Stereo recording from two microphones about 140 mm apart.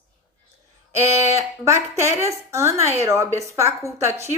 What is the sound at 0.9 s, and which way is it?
A woman's voice, 20° right (ahead or behind).